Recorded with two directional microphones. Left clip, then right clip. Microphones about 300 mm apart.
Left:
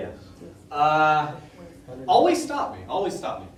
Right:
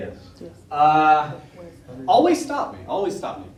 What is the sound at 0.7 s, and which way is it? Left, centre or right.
A man's voice, centre.